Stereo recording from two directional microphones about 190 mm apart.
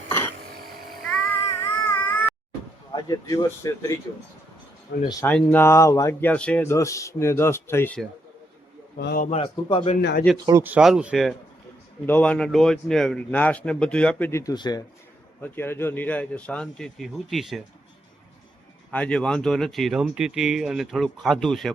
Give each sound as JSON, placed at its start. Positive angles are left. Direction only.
{"t": 1.6, "sound": "a sound", "side_deg": 10}
{"t": 2.9, "sound": "speech", "side_deg": 20}
{"t": 4.9, "sound": "a man's voice", "side_deg": 60}
{"t": 5.2, "sound": "speech", "side_deg": 10}
{"t": 9.0, "sound": "a man's voice", "side_deg": 60}
{"t": 9.2, "sound": "speech", "side_deg": 30}
{"t": 10.0, "sound": "a man's voice", "side_deg": 65}
{"t": 10.3, "sound": "speech", "side_deg": -20}
{"t": 10.6, "sound": "speech", "side_deg": -5}
{"t": 12.0, "sound": "speech", "side_deg": 10}
{"t": 15.4, "sound": "speech", "side_deg": 10}
{"t": 18.9, "sound": "speech", "side_deg": 5}